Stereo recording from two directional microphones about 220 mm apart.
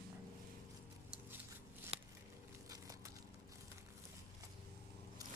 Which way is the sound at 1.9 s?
25° right (ahead or behind).